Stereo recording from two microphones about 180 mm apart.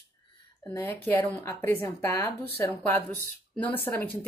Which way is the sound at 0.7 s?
10° left (ahead or behind).